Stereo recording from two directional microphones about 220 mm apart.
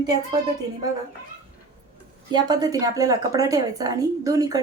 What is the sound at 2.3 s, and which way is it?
A woman's voice, 15° right (ahead or behind).